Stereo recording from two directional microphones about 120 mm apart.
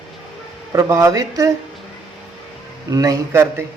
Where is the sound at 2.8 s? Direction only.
30° right (ahead or behind).